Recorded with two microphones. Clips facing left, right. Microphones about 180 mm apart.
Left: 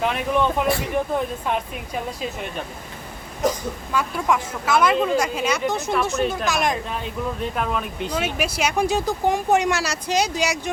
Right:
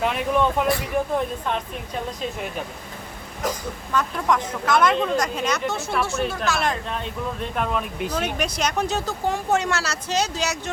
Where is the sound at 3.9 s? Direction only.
5° left (ahead or behind).